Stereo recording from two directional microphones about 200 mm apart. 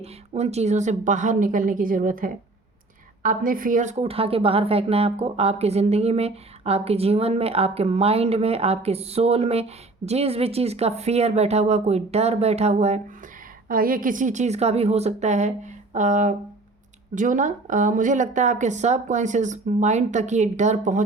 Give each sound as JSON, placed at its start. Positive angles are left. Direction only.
{"t": 0.0, "sound": "a woman's voice", "side_deg": -35}
{"t": 13.7, "sound": "a woman's voice", "side_deg": -45}